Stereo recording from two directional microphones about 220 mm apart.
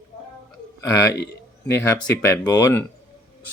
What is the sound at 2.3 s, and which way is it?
Speech, 10° left (ahead or behind).